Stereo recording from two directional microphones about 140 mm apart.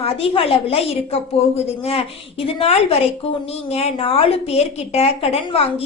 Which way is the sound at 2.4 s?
45° left (ahead or behind).